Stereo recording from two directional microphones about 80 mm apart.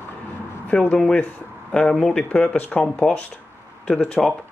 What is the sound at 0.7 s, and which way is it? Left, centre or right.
Speech, centre.